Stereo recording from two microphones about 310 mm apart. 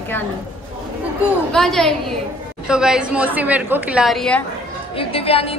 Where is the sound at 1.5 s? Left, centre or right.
Centre.